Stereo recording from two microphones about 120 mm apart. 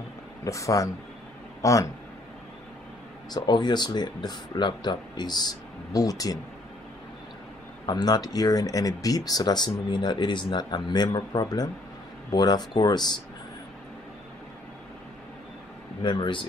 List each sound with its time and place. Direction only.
0.5 s speech: 25° left (ahead or behind)
3.3 s speech: 35° left (ahead or behind)
7.8 s speech: 35° left (ahead or behind)
16.0 s speech: 40° left (ahead or behind)